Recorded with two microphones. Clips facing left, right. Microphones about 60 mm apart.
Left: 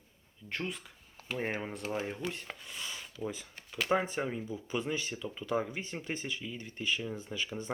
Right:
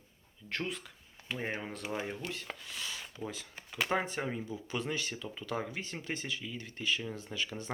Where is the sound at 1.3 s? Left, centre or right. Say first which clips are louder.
Left 3 dB; centre.